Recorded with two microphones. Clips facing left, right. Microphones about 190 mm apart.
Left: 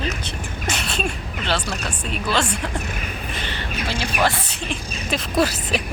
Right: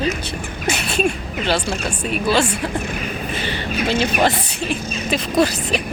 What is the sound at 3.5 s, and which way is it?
Speech, 20° right (ahead or behind).